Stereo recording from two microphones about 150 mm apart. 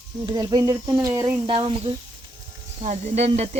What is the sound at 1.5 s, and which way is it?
Speech, 35° right (ahead or behind).